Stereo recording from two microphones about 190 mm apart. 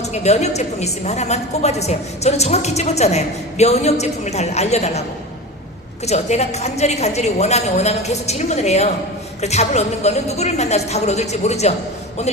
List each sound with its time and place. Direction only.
0.0 s a woman's voice: 35° left (ahead or behind)
6.1 s a woman's voice: 35° left (ahead or behind)